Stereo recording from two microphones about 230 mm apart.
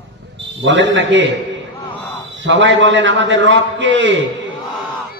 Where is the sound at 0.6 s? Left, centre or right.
Right.